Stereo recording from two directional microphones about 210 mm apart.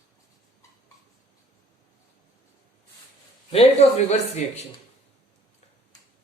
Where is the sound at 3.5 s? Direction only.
30° left (ahead or behind).